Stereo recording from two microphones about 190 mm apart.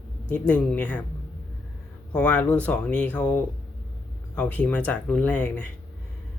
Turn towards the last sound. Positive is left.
turn(degrees=5)  # may be behind; listen again after turning